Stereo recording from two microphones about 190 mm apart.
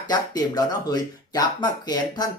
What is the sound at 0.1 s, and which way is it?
Speech, 20° left (ahead or behind).